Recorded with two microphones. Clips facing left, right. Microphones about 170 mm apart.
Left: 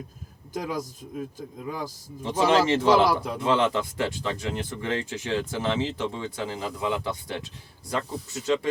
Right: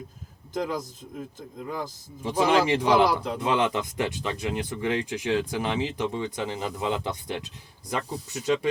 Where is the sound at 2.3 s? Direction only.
15° right (ahead or behind).